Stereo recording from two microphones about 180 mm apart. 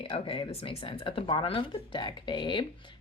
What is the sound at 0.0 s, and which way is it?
Speech, 30° left (ahead or behind).